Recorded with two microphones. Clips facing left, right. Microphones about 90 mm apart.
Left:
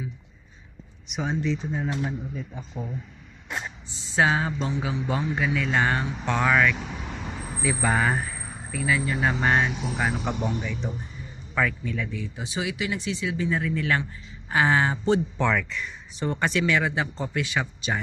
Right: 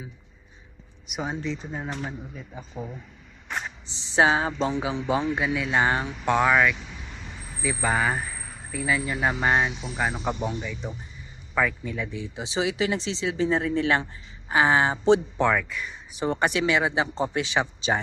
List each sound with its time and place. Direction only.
1.0 s speech: 5° right (ahead or behind)
4.1 s speech: 20° right (ahead or behind)
6.8 s vehicle: 55° left (ahead or behind)
7.6 s speech: centre (ahead or behind)
8.7 s speech: 10° right (ahead or behind)
9.7 s speech: 55° left (ahead or behind)
10.4 s speech: centre (ahead or behind)
11.5 s speech: 10° right (ahead or behind)
15.4 s speech: 10° right (ahead or behind); by 18.0 s 25° right (ahead or behind)